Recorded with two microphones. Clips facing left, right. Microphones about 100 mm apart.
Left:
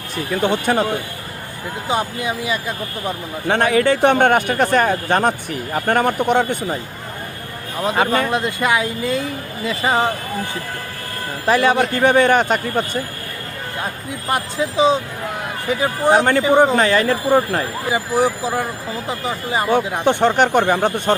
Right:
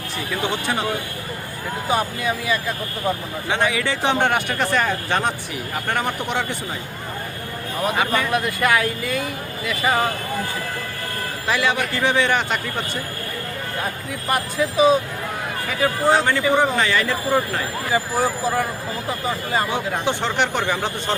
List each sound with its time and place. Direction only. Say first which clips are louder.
0.3 s speech: left 6 dB; 45° left (ahead or behind)
1.9 s speech: left 1 dB; 20° left (ahead or behind)
3.4 s speech: left 7 dB; 50° left (ahead or behind)
7.9 s speech: left 4 dB; 35° left (ahead or behind)
8.3 s speech: left 1 dB; 25° left (ahead or behind)
11.4 s speech: left 6 dB; 40° left (ahead or behind)
14.1 s speech: left 2 dB; 20° left (ahead or behind)
16.6 s speech: left 5 dB; 40° left (ahead or behind)
17.8 s speech: left 3 dB; 20° left (ahead or behind)
20.1 s speech: left 8 dB; 50° left (ahead or behind)